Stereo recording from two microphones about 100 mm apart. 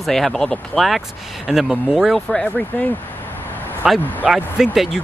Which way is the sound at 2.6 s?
15° left (ahead or behind).